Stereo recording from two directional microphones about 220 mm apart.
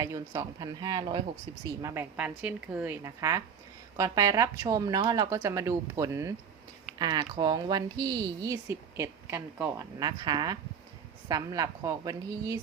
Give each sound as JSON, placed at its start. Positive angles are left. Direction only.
{"t": 0.0, "sound": "a woman's voice", "side_deg": -15}
{"t": 10.0, "sound": "a woman's voice", "side_deg": -20}